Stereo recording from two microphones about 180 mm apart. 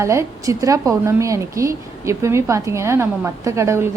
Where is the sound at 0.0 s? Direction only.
15° right (ahead or behind).